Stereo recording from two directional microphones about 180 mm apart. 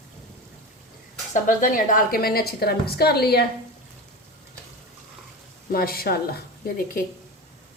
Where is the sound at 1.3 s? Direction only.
45° left (ahead or behind).